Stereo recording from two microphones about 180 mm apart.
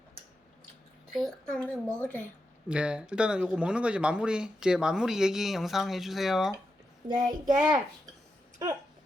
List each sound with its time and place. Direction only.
1.1 s speech: centre (ahead or behind)
2.6 s speech: 5° right (ahead or behind)
7.2 s a child's voice: 45° right (ahead or behind)